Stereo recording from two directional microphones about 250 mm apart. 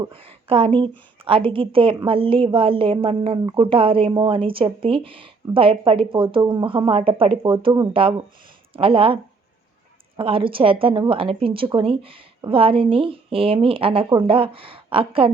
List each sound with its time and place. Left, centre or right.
0.0 s a woman's voice: right
10.2 s a woman's voice: right